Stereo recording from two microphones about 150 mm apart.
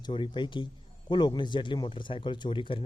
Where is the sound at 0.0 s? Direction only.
30° left (ahead or behind).